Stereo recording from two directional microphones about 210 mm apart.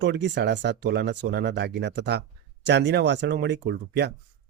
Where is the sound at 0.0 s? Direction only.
55° right (ahead or behind).